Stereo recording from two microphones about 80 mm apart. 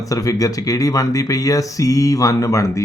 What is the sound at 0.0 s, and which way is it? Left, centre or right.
A man's voice, left.